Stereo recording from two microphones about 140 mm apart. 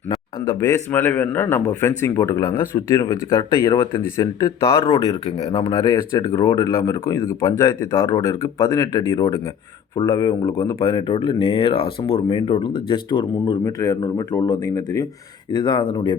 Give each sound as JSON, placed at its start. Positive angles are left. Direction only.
{"t": 0.1, "sound": "speech", "side_deg": 20}
{"t": 5.5, "sound": "speech", "side_deg": 35}
{"t": 5.7, "sound": "speech", "side_deg": 20}
{"t": 13.7, "sound": "speech", "side_deg": 25}